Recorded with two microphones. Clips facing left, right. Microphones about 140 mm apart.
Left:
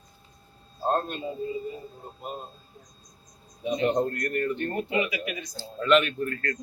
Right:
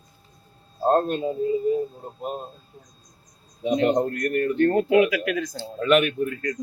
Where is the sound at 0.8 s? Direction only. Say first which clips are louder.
Right 7 dB; 40° right (ahead or behind).